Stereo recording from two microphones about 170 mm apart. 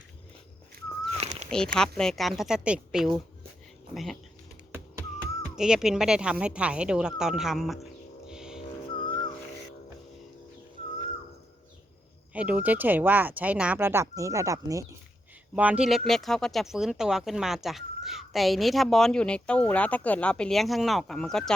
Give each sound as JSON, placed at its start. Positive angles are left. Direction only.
{"t": 1.2, "sound": "cat", "side_deg": -40}
{"t": 1.5, "sound": "speech", "side_deg": 5}
{"t": 5.5, "sound": "speech", "side_deg": -5}
{"t": 8.3, "sound": "a sound", "side_deg": -5}
{"t": 8.9, "sound": "music", "side_deg": 30}
{"t": 12.3, "sound": "speech", "side_deg": -5}
{"t": 15.5, "sound": "speech", "side_deg": -10}